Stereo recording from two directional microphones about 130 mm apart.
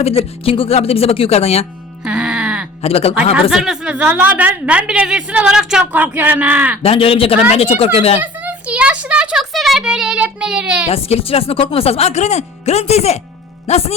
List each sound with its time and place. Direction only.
0.0 s speech: 50° left (ahead or behind)
2.0 s music: 10° right (ahead or behind)
2.8 s speech: 50° left (ahead or behind)
3.5 s a woman's voice: 5° right (ahead or behind)
6.8 s speech: 45° left (ahead or behind)
8.2 s music: 10° right (ahead or behind)
10.8 s speech: 50° left (ahead or behind)